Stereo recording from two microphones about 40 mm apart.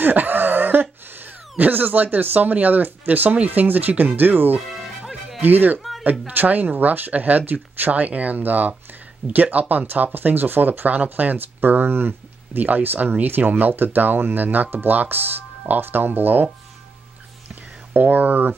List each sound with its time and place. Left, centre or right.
0.0 s a sound: right
3.4 s speech: right
12.5 s speech: right
17.9 s speech: right